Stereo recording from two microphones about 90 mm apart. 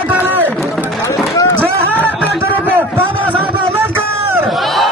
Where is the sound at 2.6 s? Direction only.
25° right (ahead or behind).